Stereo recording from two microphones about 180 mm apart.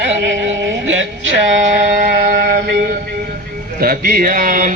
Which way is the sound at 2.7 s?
55° right (ahead or behind).